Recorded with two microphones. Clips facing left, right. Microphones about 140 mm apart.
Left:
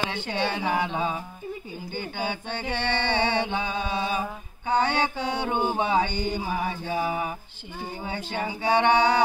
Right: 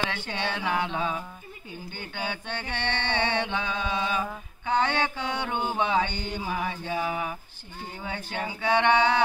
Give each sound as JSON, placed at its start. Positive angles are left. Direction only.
{"t": 0.3, "sound": "mantra", "side_deg": 35}
{"t": 8.4, "sound": "mantra", "side_deg": 40}